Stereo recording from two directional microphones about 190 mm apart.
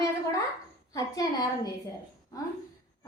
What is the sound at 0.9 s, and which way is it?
Speech, 20° left (ahead or behind).